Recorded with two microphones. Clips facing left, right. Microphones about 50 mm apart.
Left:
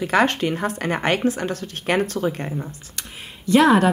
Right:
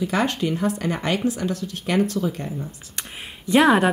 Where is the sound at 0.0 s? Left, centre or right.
Left.